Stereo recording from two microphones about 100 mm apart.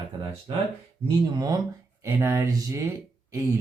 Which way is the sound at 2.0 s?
25° right (ahead or behind).